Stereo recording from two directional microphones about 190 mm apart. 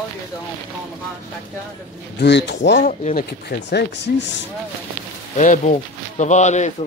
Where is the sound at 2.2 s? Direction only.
65° left (ahead or behind).